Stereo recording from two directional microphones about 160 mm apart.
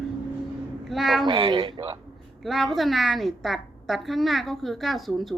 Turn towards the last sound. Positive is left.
turn(degrees=0)  # may be behind; listen again after turning